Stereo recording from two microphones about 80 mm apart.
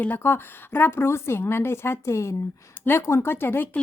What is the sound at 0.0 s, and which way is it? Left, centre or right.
A woman's voice, left.